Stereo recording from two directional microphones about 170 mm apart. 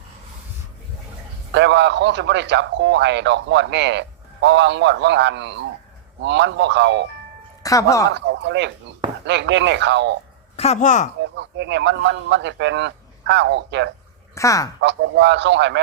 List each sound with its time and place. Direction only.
1.5 s a man's voice: 90° right
7.6 s speech: 20° left (ahead or behind)
8.1 s a man's voice: 90° right
10.6 s speech: 40° left (ahead or behind)
11.3 s a man's voice: 90° right
14.3 s speech: 20° left (ahead or behind)
14.8 s a man's voice: 90° right